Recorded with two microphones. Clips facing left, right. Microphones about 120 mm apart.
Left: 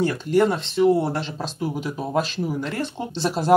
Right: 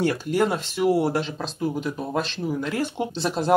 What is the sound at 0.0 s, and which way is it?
Speech, 5° right (ahead or behind).